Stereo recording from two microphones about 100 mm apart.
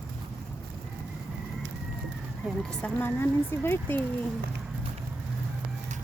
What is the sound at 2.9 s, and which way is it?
Speech, 20° left (ahead or behind).